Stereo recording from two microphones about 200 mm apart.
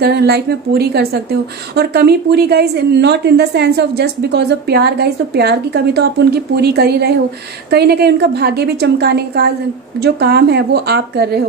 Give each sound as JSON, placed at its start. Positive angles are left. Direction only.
{"t": 0.0, "sound": "a woman's voice", "side_deg": -55}